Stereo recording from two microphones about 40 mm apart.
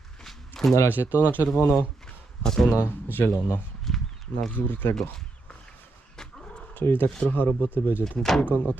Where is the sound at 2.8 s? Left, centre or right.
Left.